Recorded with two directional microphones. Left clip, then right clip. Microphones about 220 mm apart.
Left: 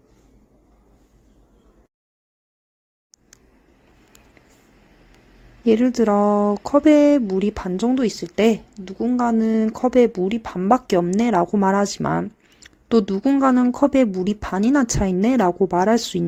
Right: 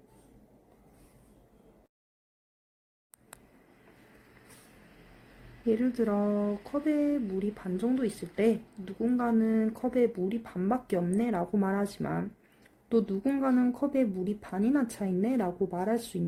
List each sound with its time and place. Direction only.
5.6 s speech: 35° left (ahead or behind)